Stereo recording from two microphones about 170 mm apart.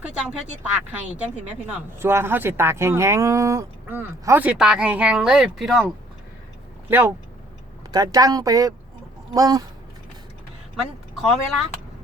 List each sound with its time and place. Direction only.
0.0 s speech: 5° right (ahead or behind)
7.9 s speech: 25° right (ahead or behind)
10.8 s speech: 5° right (ahead or behind)